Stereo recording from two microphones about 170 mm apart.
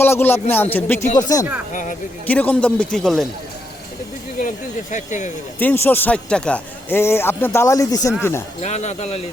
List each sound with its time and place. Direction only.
0.0 s a man's voice: 15° left (ahead or behind)
1.7 s speech: 50° left (ahead or behind)
2.2 s a man's voice: 10° left (ahead or behind)
4.4 s speech: 50° left (ahead or behind)
5.5 s a man's voice: 10° left (ahead or behind)
8.6 s speech: 40° left (ahead or behind)